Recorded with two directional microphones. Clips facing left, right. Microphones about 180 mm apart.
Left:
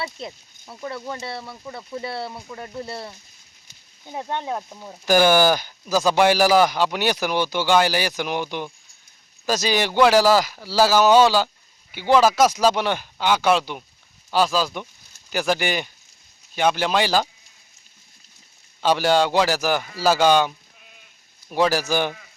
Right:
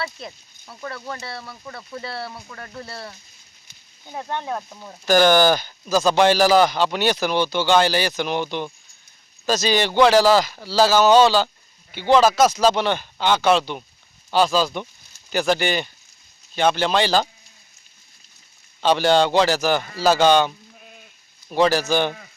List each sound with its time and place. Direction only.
0.0 s speech: 20° left (ahead or behind)
18.8 s speech: 10° left (ahead or behind)